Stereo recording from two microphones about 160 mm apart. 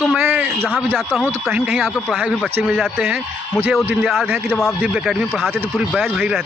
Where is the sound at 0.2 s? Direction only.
10° right (ahead or behind).